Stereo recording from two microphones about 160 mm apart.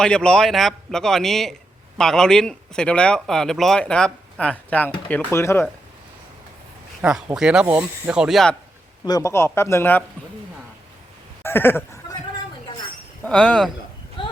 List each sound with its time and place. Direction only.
0.0 s speech: 5° left (ahead or behind)
7.0 s speech: 5° right (ahead or behind)
9.0 s speech: 20° left (ahead or behind)
11.4 s a sound: 15° left (ahead or behind)
13.2 s speech: 5° left (ahead or behind)
14.2 s clip-clop: 30° left (ahead or behind)